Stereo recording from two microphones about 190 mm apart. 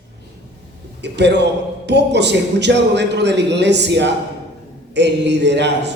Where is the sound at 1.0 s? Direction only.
65° right (ahead or behind).